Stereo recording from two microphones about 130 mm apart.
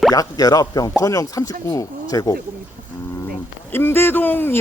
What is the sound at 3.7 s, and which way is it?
Speech, 15° left (ahead or behind).